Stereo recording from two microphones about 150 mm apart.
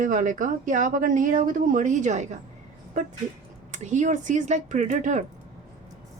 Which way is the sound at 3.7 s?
55° right (ahead or behind).